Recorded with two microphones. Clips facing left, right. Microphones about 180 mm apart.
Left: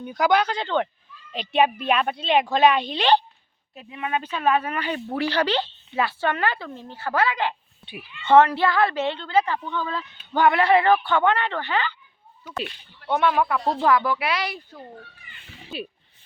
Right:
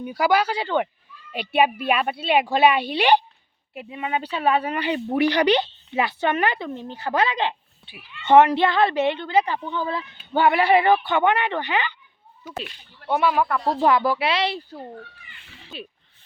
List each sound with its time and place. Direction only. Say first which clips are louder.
0.0 s a woman's voice: even; 10° right (ahead or behind)
13.1 s speech: even; 5° right (ahead or behind)
13.8 s speech: right 2 dB; 30° right (ahead or behind)
15.7 s speech: left 4 dB; 5° left (ahead or behind)